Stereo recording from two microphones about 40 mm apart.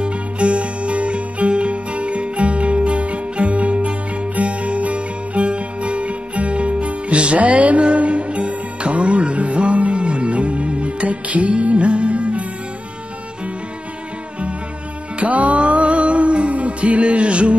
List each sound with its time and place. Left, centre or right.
0.0 s music: right
15.1 s music: right